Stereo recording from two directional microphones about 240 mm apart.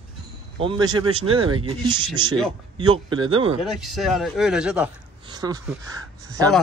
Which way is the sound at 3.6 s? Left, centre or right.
Centre.